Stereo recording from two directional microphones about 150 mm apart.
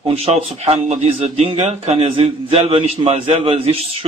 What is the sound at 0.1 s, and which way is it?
A man's voice, 45° right (ahead or behind).